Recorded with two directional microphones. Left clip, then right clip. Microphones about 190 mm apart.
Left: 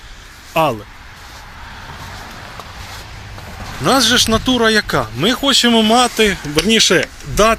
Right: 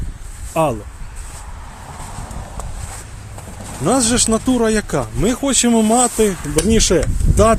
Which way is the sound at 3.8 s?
25° right (ahead or behind).